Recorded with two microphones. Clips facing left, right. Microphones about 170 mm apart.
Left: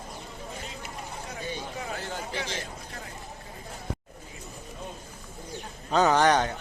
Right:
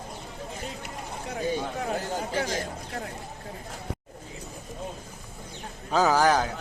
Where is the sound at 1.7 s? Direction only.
60° right (ahead or behind).